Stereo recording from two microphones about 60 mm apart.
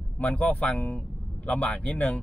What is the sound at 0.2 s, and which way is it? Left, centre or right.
Speech, left.